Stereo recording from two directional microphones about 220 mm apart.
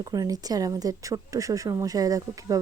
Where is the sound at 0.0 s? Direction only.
15° right (ahead or behind).